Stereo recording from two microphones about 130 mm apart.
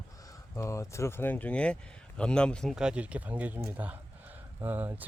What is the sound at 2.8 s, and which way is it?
Speech, 10° right (ahead or behind).